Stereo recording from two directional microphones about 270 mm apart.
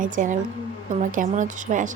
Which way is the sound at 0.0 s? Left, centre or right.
Right.